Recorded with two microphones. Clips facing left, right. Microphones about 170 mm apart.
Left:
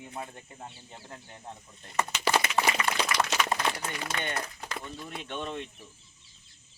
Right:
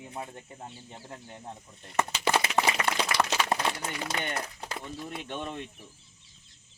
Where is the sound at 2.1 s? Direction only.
30° right (ahead or behind).